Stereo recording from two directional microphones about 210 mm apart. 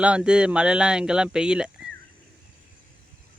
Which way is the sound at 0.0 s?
5° right (ahead or behind).